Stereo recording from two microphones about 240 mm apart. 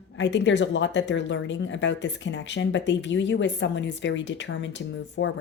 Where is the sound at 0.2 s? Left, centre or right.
Left.